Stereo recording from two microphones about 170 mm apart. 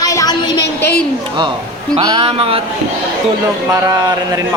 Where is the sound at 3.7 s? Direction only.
20° right (ahead or behind).